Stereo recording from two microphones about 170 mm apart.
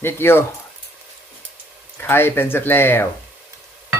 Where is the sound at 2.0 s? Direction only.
15° left (ahead or behind).